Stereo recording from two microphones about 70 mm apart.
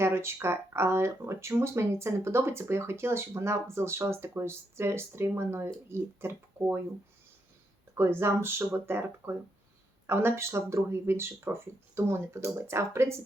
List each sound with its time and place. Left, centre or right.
0.0 s speech: right
7.9 s speech: right